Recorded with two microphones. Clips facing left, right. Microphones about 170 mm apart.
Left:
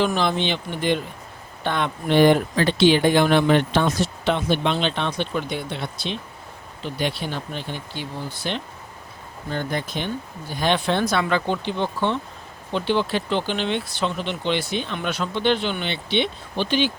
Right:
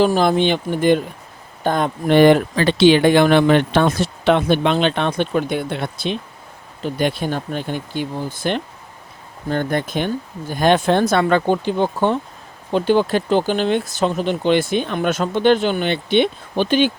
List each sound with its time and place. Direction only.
0.0 s speech: 40° right (ahead or behind)
2.1 s speech: 85° right; by 16.9 s 50° right (ahead or behind)